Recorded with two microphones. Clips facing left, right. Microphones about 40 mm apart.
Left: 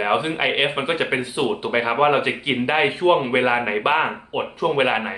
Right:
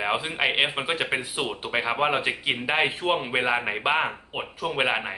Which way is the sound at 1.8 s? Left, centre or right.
Centre.